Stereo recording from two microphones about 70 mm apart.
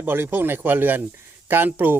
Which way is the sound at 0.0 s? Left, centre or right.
Right.